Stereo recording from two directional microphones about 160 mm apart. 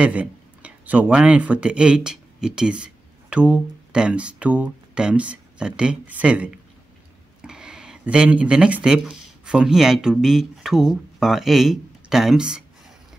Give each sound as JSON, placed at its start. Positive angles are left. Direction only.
{"t": 0.0, "sound": "speech", "side_deg": -10}